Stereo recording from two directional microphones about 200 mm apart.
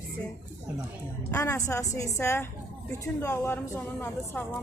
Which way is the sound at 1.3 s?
15° left (ahead or behind).